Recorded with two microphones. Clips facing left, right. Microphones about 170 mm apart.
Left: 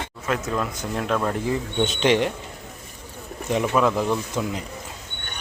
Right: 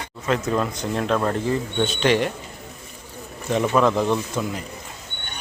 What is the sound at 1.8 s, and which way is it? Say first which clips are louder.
Speech: left 1 dB; 20° left (ahead or behind).